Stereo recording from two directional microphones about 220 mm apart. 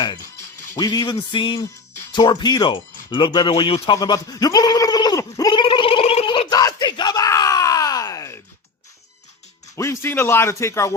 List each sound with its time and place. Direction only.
0.0 s speech: 20° left (ahead or behind)
3.1 s a sound: 20° left (ahead or behind)
9.7 s speech: 15° left (ahead or behind)